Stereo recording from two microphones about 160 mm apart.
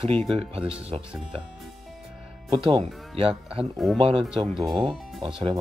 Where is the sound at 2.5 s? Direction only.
30° right (ahead or behind).